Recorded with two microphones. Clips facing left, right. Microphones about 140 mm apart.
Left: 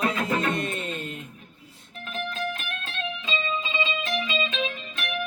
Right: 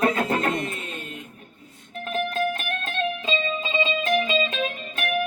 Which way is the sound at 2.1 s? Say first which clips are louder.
Right 6 dB; 55° right (ahead or behind).